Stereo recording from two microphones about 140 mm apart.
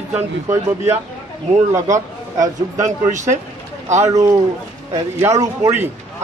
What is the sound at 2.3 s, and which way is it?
Speech, 25° right (ahead or behind).